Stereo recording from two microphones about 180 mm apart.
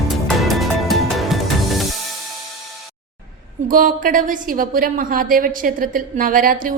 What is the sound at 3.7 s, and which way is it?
A woman's voice, 50° right (ahead or behind).